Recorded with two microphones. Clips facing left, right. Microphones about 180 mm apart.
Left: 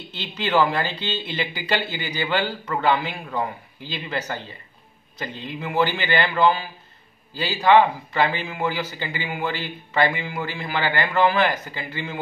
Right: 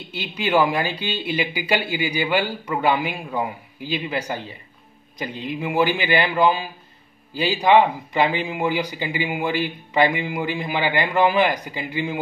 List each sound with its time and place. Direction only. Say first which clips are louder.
0.1 s a man's voice: right 2 dB; 10° right (ahead or behind)